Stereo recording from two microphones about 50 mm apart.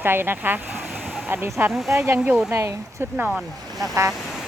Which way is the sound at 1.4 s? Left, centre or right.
Right.